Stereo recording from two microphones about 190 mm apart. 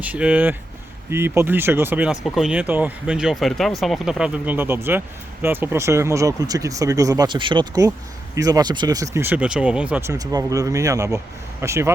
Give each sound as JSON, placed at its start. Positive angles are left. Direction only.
{"t": 0.0, "sound": "speech", "side_deg": -5}